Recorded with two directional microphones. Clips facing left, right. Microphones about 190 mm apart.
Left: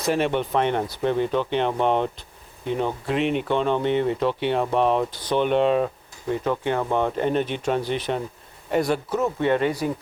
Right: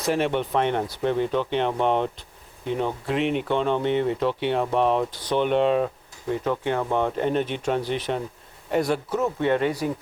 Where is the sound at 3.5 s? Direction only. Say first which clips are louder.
Left 1 dB; 25° left (ahead or behind).